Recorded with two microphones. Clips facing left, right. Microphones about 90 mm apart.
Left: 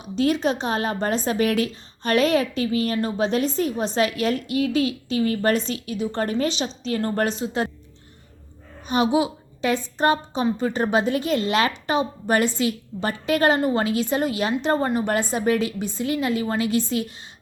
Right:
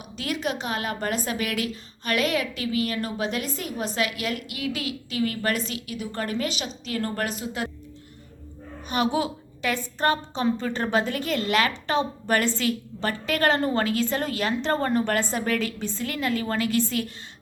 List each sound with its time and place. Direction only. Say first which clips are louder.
0.0 s a woman's voice: left 8 dB; 30° left (ahead or behind)
8.9 s a woman's voice: left 4 dB; 20° left (ahead or behind)